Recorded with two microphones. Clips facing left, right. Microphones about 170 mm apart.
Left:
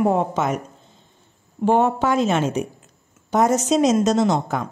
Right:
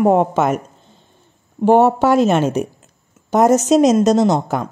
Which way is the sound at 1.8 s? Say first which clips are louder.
Right 6 dB; 60° right (ahead or behind).